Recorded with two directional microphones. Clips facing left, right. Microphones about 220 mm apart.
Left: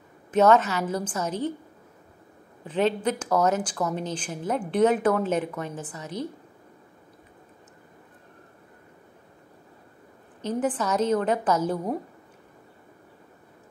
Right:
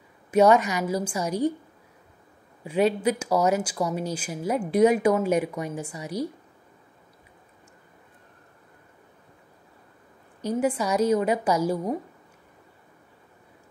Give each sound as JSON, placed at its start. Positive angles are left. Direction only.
{"t": 0.3, "sound": "speech", "side_deg": -10}
{"t": 2.6, "sound": "speech", "side_deg": -10}
{"t": 10.4, "sound": "speech", "side_deg": -10}